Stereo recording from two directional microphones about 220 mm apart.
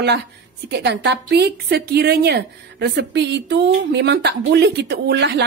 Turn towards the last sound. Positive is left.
turn(degrees=-50)  # may be behind; listen again after turning